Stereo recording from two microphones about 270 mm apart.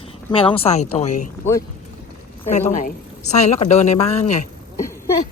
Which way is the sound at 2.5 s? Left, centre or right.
Left.